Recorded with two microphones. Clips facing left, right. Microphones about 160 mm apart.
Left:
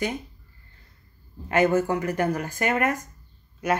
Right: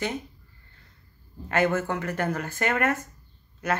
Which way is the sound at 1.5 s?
10° left (ahead or behind).